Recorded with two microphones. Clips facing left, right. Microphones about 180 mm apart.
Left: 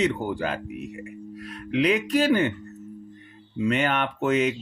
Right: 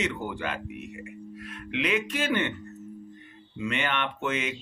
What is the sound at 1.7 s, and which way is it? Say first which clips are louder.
Speech: left 7 dB; 35° left (ahead or behind).